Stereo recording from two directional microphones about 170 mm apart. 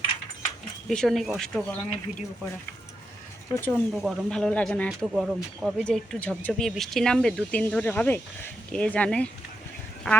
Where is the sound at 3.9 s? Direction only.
Centre (ahead or behind).